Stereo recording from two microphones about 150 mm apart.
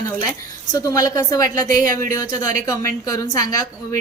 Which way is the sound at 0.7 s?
25° left (ahead or behind).